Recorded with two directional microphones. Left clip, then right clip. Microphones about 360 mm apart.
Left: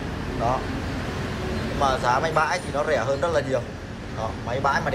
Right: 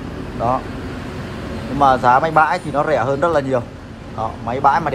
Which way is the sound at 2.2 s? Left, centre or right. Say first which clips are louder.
Right 8 dB; centre.